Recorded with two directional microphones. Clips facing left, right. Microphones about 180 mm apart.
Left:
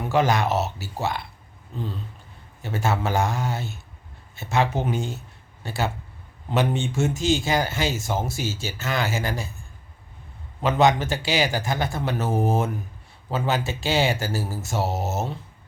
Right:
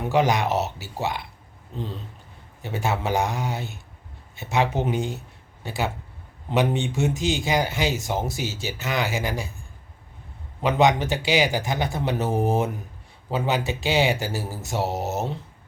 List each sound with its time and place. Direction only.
0.1 s speech: 15° right (ahead or behind)
2.6 s speech: 15° right (ahead or behind)
10.6 s speech: 15° right (ahead or behind)